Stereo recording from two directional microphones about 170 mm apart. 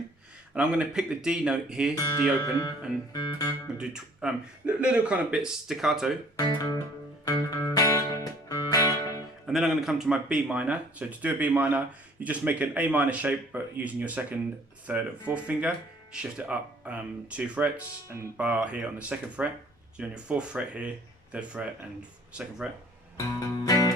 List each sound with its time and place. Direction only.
0.5 s speech: 5° right (ahead or behind)
2.4 s speech: 15° left (ahead or behind)
3.1 s music: 20° left (ahead or behind)
3.8 s speech: 5° right (ahead or behind)
6.3 s music: 25° left (ahead or behind)
9.5 s speech: centre (ahead or behind)
23.1 s music: 20° left (ahead or behind)